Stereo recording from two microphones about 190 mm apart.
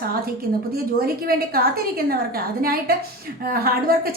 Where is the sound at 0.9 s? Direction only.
55° right (ahead or behind).